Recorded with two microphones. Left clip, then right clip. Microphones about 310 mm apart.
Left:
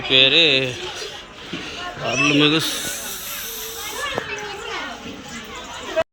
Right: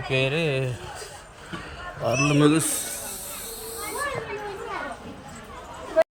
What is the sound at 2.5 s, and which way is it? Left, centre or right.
Speech, centre.